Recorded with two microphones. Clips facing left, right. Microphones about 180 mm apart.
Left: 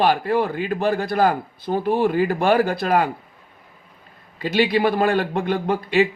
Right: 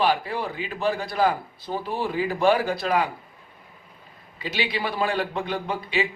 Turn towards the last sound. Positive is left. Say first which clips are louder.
# left 7 dB
turn(degrees=50)  # may be behind; listen again after turning